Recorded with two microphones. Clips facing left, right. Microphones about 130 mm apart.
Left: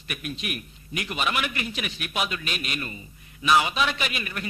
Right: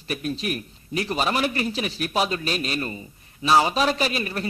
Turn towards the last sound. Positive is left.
turn(degrees=-35)  # may be behind; listen again after turning